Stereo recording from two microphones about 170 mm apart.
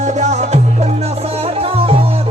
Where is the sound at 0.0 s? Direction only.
45° right (ahead or behind).